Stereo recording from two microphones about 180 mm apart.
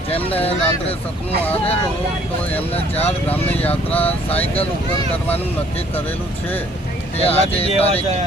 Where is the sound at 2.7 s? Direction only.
35° left (ahead or behind).